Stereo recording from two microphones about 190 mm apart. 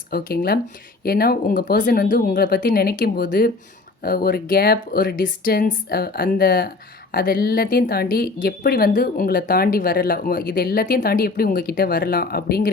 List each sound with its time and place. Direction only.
0.1 s speech: 50° left (ahead or behind)